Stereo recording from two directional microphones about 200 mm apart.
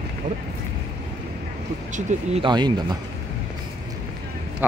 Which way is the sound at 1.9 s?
30° right (ahead or behind).